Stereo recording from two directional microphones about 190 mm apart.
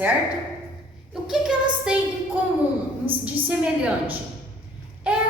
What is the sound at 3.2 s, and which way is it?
Speech, 5° right (ahead or behind).